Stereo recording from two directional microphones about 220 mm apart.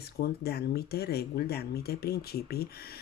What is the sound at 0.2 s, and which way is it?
Speech, 45° left (ahead or behind).